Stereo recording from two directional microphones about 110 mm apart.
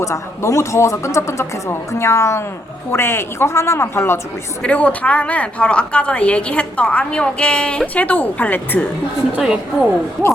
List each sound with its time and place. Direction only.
0.0 s a man's voice: 25° left (ahead or behind)
4.6 s a woman's voice: 10° left (ahead or behind)
9.3 s a woman's voice: 5° right (ahead or behind)